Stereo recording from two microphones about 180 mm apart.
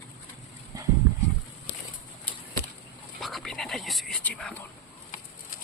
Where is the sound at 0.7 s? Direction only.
20° right (ahead or behind).